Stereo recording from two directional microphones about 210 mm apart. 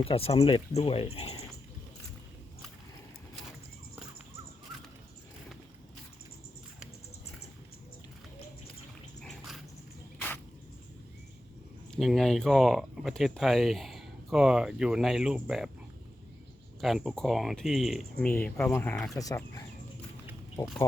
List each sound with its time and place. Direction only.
0.0 s speech: 25° left (ahead or behind)
9.2 s dog: centre (ahead or behind)
10.2 s cricket: 10° left (ahead or behind)
11.9 s speech: centre (ahead or behind)
16.8 s speech: centre (ahead or behind)
19.1 s speech: 15° left (ahead or behind)